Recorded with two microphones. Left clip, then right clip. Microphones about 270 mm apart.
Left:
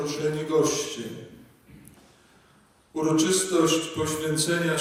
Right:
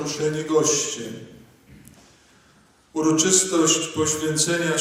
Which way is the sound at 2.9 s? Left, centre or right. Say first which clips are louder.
Right 4 dB; centre.